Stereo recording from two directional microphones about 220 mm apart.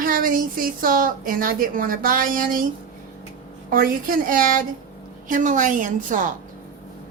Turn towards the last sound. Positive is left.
turn(degrees=-35)  # may be behind; listen again after turning